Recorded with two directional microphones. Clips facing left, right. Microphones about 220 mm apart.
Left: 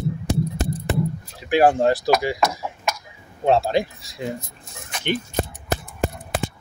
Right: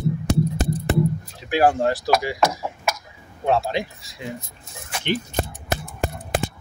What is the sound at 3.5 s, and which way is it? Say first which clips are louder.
Speech: left 3 dB; 40° left (ahead or behind).